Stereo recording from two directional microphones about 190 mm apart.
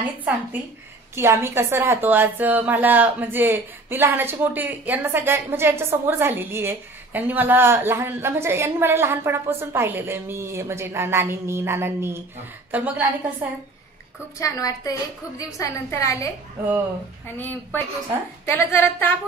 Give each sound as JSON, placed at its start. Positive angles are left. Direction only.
{"t": 1.1, "sound": "a woman's voice", "side_deg": -15}
{"t": 14.4, "sound": "a woman's voice", "side_deg": 15}
{"t": 17.4, "sound": "a woman's voice", "side_deg": 10}